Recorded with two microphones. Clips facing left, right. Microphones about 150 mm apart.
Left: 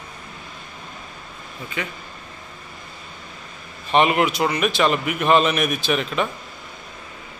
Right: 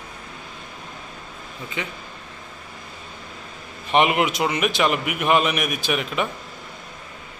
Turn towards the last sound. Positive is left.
turn(degrees=-10)  # may be behind; listen again after turning